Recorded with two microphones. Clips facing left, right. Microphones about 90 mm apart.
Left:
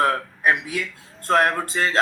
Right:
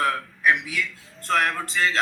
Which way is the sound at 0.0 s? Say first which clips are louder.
Left 3 dB; 40° left (ahead or behind).